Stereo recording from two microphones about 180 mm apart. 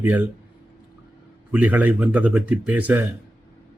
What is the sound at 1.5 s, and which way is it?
Speech, 10° right (ahead or behind).